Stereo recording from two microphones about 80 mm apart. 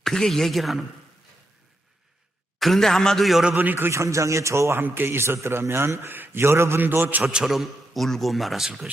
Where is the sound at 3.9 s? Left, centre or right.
Right.